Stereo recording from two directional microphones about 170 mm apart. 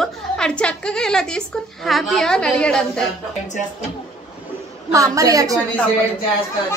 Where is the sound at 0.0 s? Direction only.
5° left (ahead or behind).